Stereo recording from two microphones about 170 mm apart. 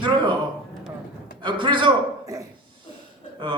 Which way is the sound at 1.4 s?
25° right (ahead or behind).